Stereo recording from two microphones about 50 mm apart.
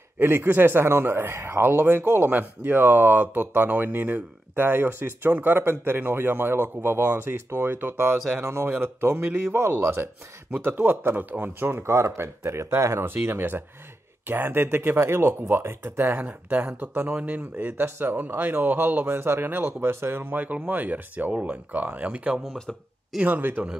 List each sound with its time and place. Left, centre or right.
0.5 s speech: right
8.4 s speech: right
8.6 s speech: right
10.6 s speech: right
11.8 s speech: right
13.0 s speech: right
16.2 s speech: right
17.2 s speech: right
17.6 s speech: right
20.5 s speech: right
23.2 s speech: right